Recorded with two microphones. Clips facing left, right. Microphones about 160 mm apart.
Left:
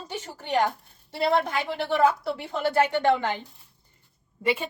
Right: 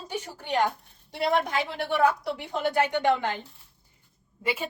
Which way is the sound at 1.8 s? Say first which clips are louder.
Left 2 dB; 15° right (ahead or behind).